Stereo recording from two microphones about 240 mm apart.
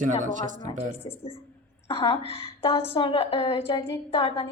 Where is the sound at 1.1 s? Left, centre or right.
Centre.